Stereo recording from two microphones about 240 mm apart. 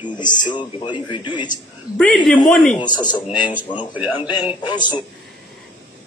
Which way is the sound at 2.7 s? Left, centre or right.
Centre.